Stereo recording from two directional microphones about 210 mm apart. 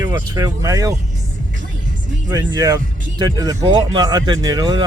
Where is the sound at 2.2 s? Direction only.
20° right (ahead or behind).